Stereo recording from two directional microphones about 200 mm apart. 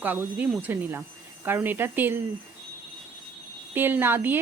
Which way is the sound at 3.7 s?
10° right (ahead or behind).